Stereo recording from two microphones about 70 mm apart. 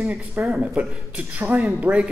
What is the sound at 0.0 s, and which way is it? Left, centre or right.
A man's voice, centre.